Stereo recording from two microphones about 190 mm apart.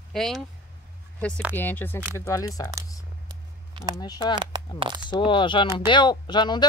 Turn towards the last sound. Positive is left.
turn(degrees=25)  # may be behind; listen again after turning